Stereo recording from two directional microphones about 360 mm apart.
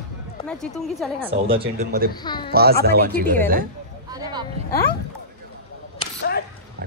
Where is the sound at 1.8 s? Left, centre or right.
Right.